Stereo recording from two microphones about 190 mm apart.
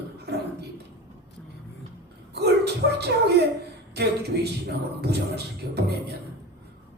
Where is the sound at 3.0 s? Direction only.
60° right (ahead or behind).